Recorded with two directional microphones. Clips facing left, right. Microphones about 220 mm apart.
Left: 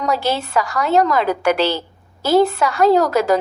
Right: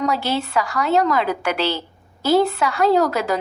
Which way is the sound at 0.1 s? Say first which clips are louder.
Left 2 dB; 45° left (ahead or behind).